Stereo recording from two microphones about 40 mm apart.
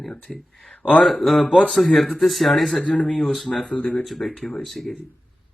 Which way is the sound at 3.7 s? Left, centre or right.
Left.